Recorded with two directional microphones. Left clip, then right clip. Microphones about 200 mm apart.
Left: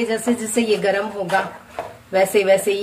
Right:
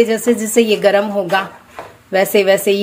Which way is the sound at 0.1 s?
40° right (ahead or behind).